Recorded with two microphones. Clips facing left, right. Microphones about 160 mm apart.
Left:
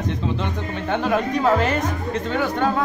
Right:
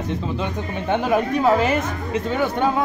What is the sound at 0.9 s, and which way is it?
Speech, 10° right (ahead or behind).